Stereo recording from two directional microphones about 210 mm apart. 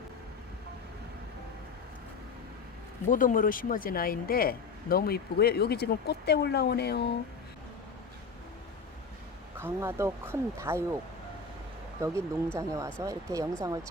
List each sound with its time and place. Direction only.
3.1 s a woman's voice: 40° left (ahead or behind)
9.6 s speech: 10° right (ahead or behind)
11.9 s speech: 15° right (ahead or behind)